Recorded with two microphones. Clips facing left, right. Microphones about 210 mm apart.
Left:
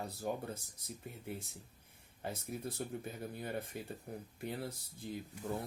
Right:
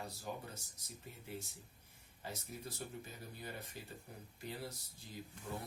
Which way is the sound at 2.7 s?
55° left (ahead or behind).